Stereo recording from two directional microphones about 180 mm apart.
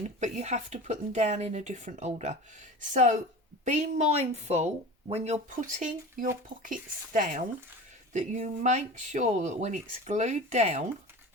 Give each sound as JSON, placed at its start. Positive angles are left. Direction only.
{"t": 0.2, "sound": "a woman's voice", "side_deg": -40}